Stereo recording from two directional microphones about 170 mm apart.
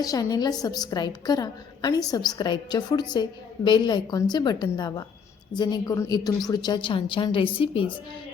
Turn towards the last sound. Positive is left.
turn(degrees=30)  # may be behind; listen again after turning